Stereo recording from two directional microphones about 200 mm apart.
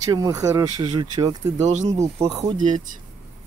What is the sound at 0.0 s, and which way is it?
Speech, 15° right (ahead or behind).